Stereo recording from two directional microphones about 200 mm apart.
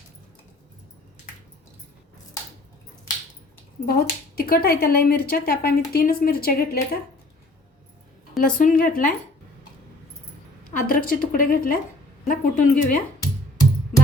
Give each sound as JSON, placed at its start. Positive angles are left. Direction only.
{"t": 3.8, "sound": "speech", "side_deg": 50}
{"t": 8.4, "sound": "speech", "side_deg": 45}
{"t": 10.8, "sound": "speech", "side_deg": 45}